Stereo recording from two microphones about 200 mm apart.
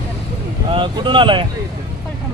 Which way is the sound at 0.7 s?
25° right (ahead or behind).